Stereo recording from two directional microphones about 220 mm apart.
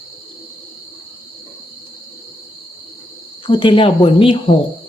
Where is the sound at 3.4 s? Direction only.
25° left (ahead or behind).